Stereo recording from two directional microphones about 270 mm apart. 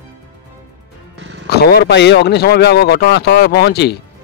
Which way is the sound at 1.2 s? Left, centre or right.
Right.